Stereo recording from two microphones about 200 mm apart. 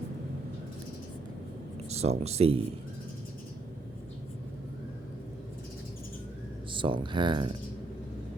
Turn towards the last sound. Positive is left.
turn(degrees=-25)  # may be behind; listen again after turning